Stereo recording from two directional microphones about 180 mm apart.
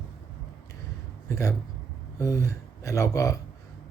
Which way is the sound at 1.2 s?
15° left (ahead or behind).